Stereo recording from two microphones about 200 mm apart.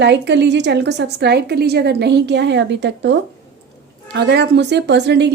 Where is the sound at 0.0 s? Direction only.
60° right (ahead or behind).